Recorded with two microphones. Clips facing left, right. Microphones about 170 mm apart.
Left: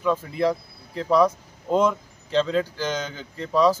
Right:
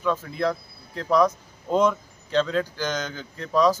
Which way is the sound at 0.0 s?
10° left (ahead or behind).